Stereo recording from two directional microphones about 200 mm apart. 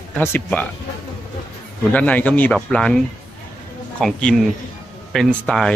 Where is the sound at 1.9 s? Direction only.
5° left (ahead or behind).